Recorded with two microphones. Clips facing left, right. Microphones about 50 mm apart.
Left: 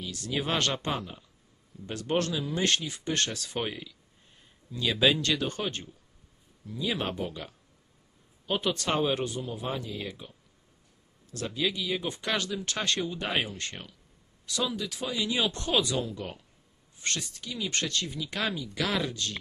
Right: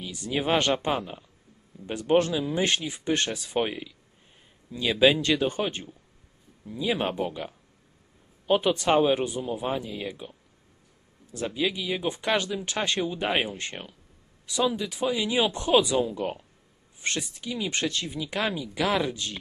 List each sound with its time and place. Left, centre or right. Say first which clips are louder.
0.0 s speech: right 3 dB; centre
11.3 s speech: right 3 dB; centre